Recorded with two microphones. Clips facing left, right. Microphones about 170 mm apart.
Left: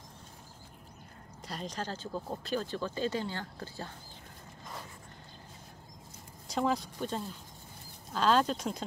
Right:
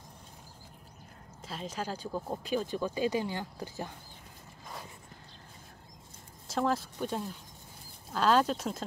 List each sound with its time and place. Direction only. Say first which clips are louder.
1.4 s speech: right 1 dB; 5° right (ahead or behind)
6.4 s speech: right 1 dB; 5° right (ahead or behind)